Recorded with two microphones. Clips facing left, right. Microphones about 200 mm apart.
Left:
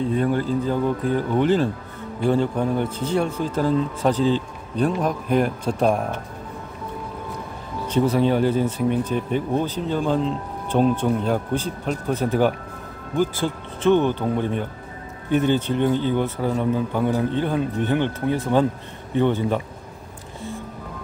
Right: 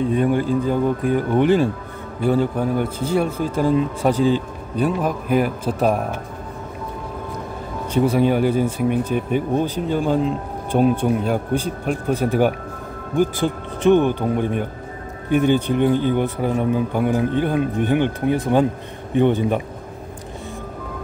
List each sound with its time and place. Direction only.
0.0 s speech: 15° right (ahead or behind)
7.9 s speech: 10° right (ahead or behind)